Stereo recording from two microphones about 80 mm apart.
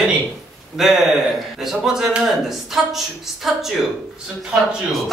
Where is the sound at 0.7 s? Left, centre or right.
Centre.